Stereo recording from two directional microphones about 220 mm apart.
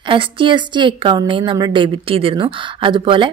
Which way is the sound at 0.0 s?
20° right (ahead or behind).